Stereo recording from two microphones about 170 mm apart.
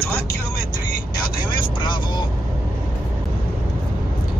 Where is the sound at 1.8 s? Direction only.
25° left (ahead or behind).